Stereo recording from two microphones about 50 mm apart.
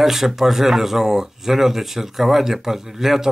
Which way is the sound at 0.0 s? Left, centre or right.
Centre.